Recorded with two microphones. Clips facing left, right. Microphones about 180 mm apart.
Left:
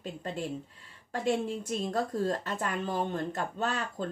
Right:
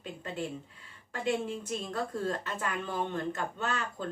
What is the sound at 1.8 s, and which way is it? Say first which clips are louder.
Speech: left 4 dB; 40° left (ahead or behind).